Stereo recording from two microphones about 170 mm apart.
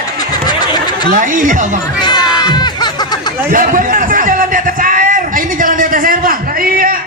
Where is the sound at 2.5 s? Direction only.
25° left (ahead or behind).